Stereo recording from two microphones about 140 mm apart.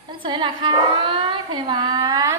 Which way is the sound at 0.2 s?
35° right (ahead or behind).